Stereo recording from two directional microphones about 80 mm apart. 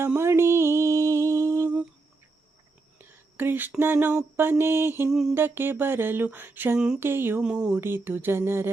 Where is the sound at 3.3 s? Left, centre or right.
Right.